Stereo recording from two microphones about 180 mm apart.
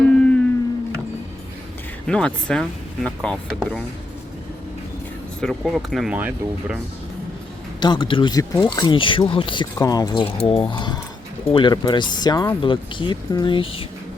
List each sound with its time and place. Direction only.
0.0 s a sound: 5° left (ahead or behind)
2.0 s speech: 5° left (ahead or behind)
5.4 s speech: centre (ahead or behind)
7.8 s speech: 25° left (ahead or behind)